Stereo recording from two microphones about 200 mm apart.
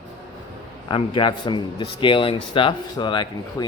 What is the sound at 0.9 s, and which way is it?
A man's voice, 25° left (ahead or behind).